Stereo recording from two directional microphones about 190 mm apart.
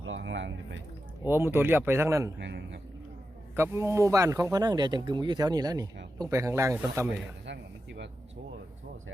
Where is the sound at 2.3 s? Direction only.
65° right (ahead or behind).